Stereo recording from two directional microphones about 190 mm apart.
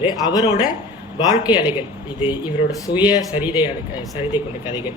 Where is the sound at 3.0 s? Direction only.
20° left (ahead or behind).